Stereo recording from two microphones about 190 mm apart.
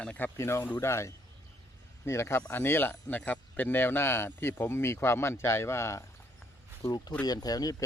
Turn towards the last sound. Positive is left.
turn(degrees=20)  # may be behind; listen again after turning